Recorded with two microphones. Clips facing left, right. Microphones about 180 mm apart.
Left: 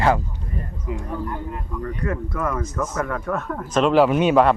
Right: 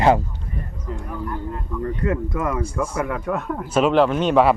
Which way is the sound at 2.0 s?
20° right (ahead or behind).